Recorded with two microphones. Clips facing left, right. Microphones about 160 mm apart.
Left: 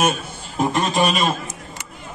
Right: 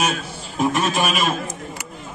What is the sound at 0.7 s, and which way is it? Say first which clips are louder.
Speech: left 5 dB; 5° right (ahead or behind).